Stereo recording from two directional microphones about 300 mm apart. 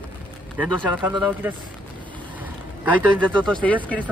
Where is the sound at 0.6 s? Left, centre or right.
Centre.